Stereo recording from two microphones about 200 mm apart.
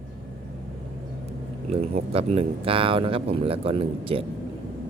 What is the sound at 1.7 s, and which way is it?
Speech, 30° right (ahead or behind).